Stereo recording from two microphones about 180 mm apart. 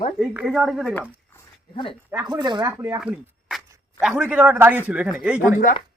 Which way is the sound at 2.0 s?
10° right (ahead or behind).